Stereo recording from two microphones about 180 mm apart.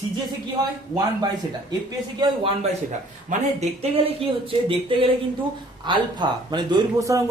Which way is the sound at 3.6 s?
35° right (ahead or behind).